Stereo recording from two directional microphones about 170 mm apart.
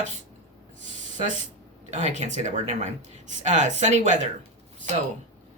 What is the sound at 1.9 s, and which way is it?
Speech, 40° right (ahead or behind).